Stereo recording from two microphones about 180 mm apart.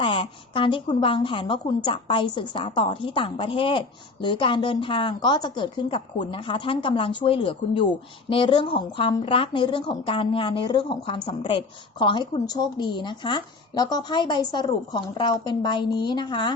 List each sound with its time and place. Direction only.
0.0 s a woman's voice: 30° left (ahead or behind)